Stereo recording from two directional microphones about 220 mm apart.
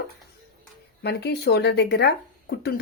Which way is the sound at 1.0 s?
50° left (ahead or behind).